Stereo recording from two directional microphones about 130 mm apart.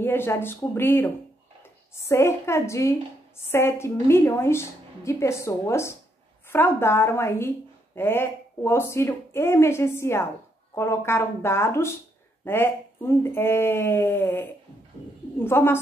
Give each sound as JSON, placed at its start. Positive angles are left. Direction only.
{"t": 0.0, "sound": "a woman's voice", "side_deg": 15}